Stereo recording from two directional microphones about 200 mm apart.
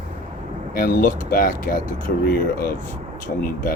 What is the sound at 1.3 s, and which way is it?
Speech, 45° left (ahead or behind).